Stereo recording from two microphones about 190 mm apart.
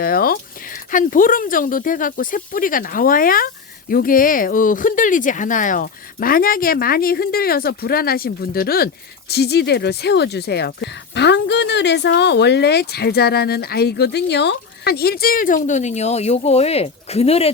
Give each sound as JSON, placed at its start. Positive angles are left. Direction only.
{"t": 0.0, "sound": "speech", "side_deg": 50}